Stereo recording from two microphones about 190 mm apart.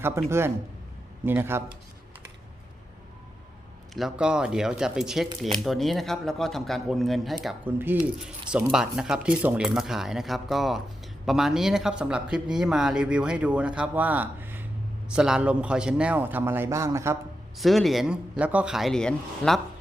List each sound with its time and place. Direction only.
0.0 s a man's voice: 15° right (ahead or behind)
3.9 s a man's voice: 5° right (ahead or behind)
17.6 s speech: centre (ahead or behind)